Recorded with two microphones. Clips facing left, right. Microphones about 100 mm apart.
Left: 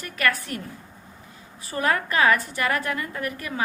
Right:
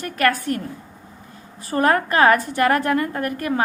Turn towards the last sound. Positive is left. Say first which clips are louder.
# right 7 dB
turn(degrees=-45)  # may be behind; listen again after turning